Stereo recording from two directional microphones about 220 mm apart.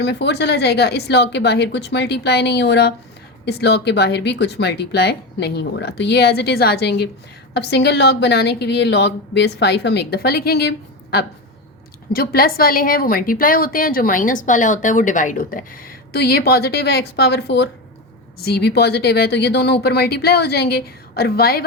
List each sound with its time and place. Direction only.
0.0 s a woman's voice: 50° left (ahead or behind)